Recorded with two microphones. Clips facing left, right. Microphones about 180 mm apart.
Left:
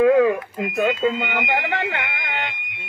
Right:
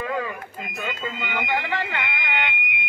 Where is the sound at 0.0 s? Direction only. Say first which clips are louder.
Left 13 dB; 70° left (ahead or behind).